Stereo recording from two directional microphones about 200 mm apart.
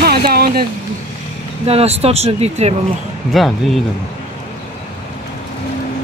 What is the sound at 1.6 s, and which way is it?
Speech, 30° right (ahead or behind).